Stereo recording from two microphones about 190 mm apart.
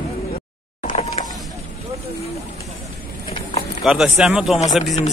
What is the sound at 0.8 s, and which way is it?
Power windows, 35° left (ahead or behind).